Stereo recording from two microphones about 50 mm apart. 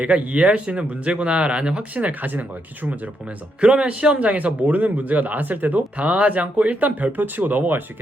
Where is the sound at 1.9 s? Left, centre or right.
Right.